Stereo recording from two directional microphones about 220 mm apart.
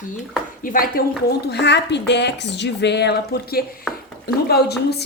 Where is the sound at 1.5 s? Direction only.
50° left (ahead or behind).